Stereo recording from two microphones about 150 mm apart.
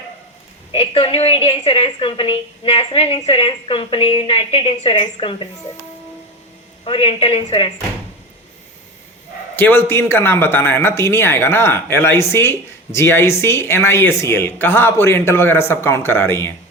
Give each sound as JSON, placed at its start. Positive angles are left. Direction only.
{"t": 0.7, "sound": "a woman's voice", "side_deg": 35}
{"t": 6.8, "sound": "a woman's voice", "side_deg": 35}
{"t": 9.6, "sound": "speech", "side_deg": 15}